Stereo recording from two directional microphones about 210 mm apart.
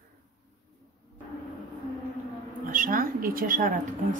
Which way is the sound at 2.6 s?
40° right (ahead or behind).